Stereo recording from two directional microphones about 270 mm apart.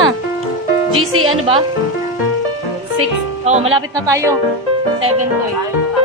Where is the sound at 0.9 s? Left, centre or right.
Right.